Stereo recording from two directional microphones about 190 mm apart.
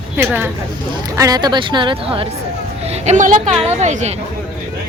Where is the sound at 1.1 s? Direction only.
20° right (ahead or behind).